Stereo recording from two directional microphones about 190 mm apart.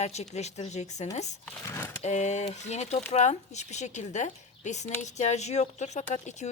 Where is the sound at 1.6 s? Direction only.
15° left (ahead or behind).